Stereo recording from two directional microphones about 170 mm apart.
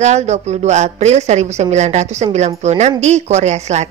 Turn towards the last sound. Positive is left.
turn(degrees=-40)  # may be behind; listen again after turning